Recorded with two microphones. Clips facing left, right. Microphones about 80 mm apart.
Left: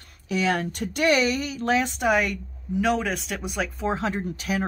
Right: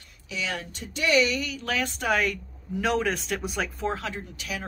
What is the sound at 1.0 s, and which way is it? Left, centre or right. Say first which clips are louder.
A woman's voice: left 2 dB; left.